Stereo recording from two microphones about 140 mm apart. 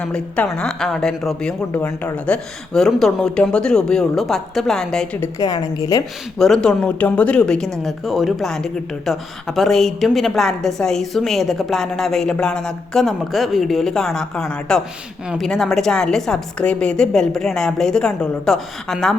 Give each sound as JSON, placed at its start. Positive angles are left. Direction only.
{"t": 0.0, "sound": "speech", "side_deg": 5}
{"t": 5.4, "sound": "a woman's voice", "side_deg": 25}
{"t": 6.4, "sound": "speech", "side_deg": 5}